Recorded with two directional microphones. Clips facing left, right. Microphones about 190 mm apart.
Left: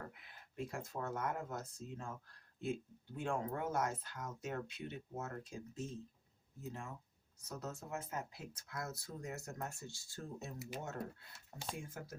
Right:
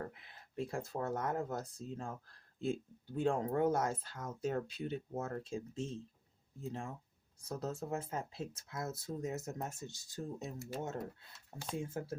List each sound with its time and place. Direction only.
0.1 s speech: 35° right (ahead or behind); by 10.5 s 15° right (ahead or behind)
11.7 s speech: 30° right (ahead or behind)